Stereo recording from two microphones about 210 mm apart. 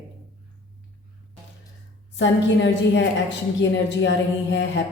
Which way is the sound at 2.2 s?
60° left (ahead or behind).